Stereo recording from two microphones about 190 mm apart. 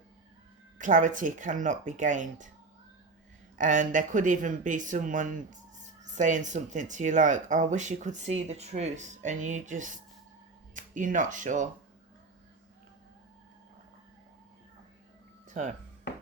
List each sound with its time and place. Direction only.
0.8 s speech: 40° right (ahead or behind)
3.6 s speech: 40° right (ahead or behind)
15.4 s music: 40° right (ahead or behind)